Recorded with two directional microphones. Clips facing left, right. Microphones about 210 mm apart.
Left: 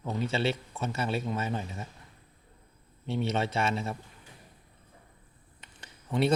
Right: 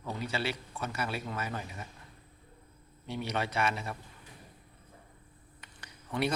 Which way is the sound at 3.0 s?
25° left (ahead or behind).